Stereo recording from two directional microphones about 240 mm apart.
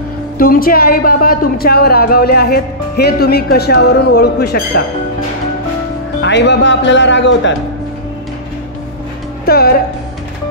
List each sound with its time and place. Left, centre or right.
0.4 s speech: left
6.2 s speech: left
9.5 s speech: left